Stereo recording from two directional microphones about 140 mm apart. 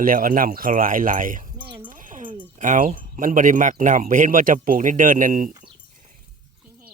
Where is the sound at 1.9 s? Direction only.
70° right (ahead or behind).